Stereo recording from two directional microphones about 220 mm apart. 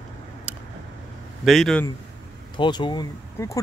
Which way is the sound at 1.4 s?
Centre (ahead or behind).